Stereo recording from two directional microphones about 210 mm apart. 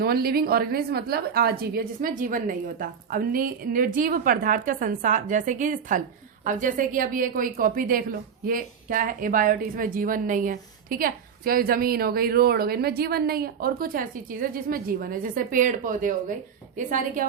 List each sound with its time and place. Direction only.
0.0 s a woman's voice: 45° right (ahead or behind)